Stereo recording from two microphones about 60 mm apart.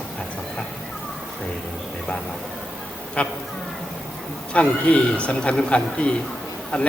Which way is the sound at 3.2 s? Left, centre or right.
Centre.